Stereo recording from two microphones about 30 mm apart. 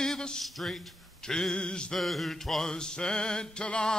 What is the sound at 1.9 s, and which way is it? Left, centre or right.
Music, centre.